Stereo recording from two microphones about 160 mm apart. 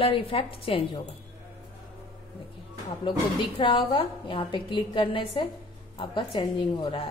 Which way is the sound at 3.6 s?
30° left (ahead or behind).